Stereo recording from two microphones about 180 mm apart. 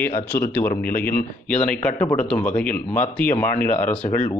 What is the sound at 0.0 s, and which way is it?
Speech, 10° left (ahead or behind).